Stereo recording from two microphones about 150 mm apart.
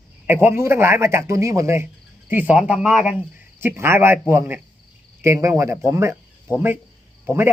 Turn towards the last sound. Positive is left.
turn(degrees=-15)  # may be behind; listen again after turning